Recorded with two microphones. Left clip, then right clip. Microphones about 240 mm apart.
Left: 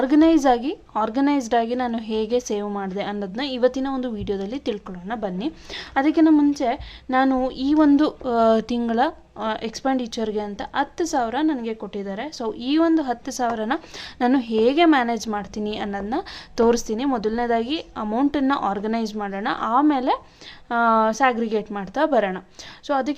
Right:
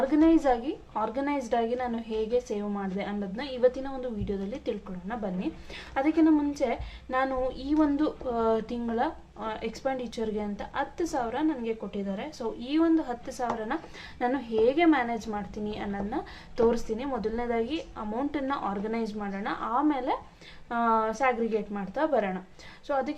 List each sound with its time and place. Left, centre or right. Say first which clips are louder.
0.1 s a woman's voice: left 8 dB; left